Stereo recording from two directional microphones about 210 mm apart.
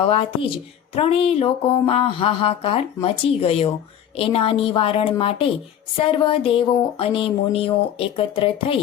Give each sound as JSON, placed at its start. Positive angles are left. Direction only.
{"t": 0.0, "sound": "speech", "side_deg": 25}